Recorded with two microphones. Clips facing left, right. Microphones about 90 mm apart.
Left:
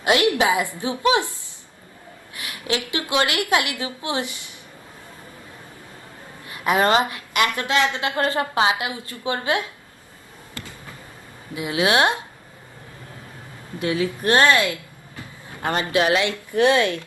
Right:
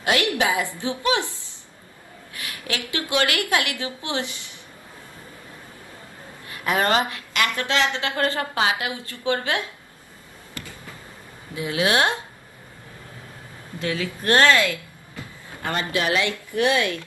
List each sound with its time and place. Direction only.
0.0 s a woman's voice: 20° left (ahead or behind)
2.3 s a woman's voice: 20° left (ahead or behind)
6.5 s a woman's voice: 20° left (ahead or behind)
11.5 s a woman's voice: 20° left (ahead or behind)
13.7 s a woman's voice: 20° left (ahead or behind)